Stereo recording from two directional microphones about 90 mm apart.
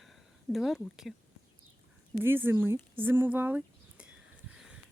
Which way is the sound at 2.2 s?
25° right (ahead or behind).